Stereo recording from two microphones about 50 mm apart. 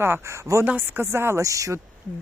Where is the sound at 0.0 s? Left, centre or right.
Right.